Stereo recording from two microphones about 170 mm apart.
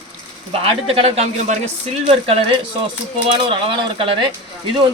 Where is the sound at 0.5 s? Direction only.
35° right (ahead or behind).